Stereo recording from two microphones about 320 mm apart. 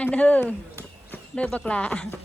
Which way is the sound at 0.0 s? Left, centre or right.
Centre.